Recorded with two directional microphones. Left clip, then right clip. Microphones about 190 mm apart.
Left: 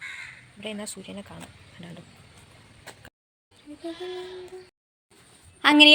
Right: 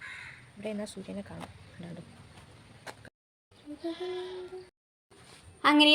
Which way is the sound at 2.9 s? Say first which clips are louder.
Even; 15° right (ahead or behind).